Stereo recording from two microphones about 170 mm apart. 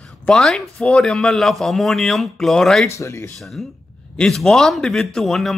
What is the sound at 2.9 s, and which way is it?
Speech, 15° left (ahead or behind).